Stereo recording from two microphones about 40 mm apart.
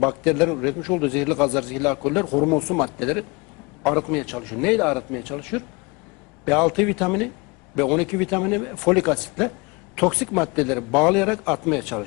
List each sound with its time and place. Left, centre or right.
0.0 s a man's voice: centre